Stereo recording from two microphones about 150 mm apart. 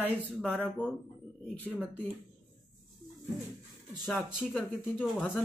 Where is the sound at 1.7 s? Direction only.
10° right (ahead or behind).